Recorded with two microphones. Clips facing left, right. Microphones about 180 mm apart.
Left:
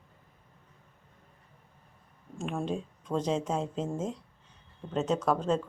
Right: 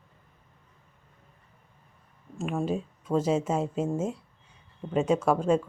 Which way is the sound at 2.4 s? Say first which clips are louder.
Right 4 dB; 5° right (ahead or behind).